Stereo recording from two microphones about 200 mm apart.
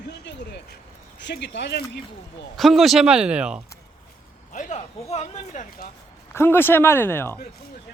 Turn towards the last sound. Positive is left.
turn(degrees=10)  # may be behind; listen again after turning